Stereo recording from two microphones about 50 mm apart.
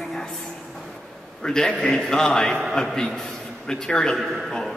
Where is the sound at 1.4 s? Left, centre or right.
Centre.